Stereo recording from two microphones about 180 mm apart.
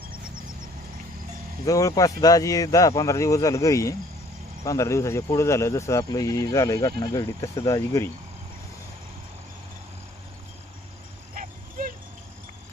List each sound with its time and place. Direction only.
1.6 s speech: 20° left (ahead or behind)
11.3 s dog: 50° right (ahead or behind)